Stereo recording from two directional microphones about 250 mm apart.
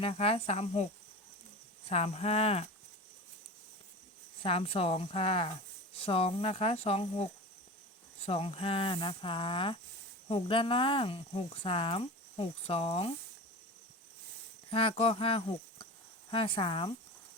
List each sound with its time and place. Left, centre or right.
0.0 s speech: left
1.9 s speech: left
4.4 s speech: left
8.3 s speech: left
14.7 s speech: left